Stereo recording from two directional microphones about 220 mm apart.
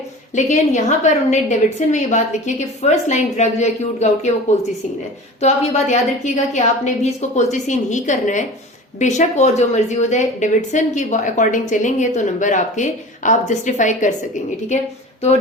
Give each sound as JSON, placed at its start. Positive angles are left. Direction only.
{"t": 0.3, "sound": "a woman's voice", "side_deg": 35}
{"t": 5.4, "sound": "a woman's voice", "side_deg": 30}